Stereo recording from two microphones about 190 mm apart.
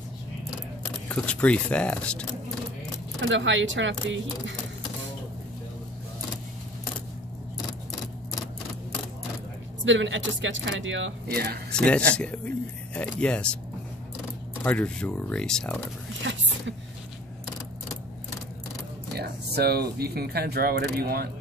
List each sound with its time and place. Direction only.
1.0 s speech: 5° left (ahead or behind)
3.2 s speech: 75° right (ahead or behind)
9.8 s speech: 80° right; by 11.6 s 55° right (ahead or behind)
11.7 s speech: 5° left (ahead or behind)
14.6 s speech: 10° left (ahead or behind)
16.2 s a sound: 75° right (ahead or behind)
19.1 s speech: 55° right (ahead or behind)